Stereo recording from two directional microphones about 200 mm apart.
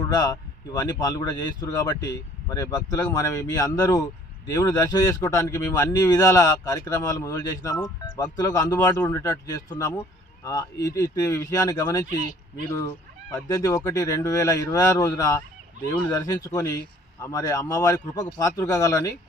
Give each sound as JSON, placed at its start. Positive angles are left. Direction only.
{"t": 0.1, "sound": "speech", "side_deg": 20}
{"t": 13.3, "sound": "speech", "side_deg": 15}